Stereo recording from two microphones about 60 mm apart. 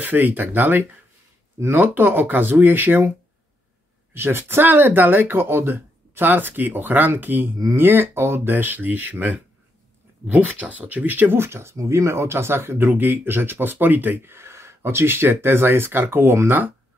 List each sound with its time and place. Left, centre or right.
0.0 s speech: right
4.1 s speech: right
11.4 s speech: right